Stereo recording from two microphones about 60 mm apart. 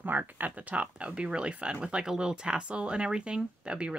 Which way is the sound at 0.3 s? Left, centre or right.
Right.